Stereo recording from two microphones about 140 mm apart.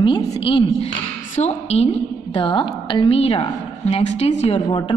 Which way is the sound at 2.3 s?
35° left (ahead or behind).